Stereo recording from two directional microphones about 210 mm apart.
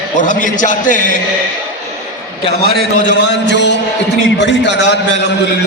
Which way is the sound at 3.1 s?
55° left (ahead or behind).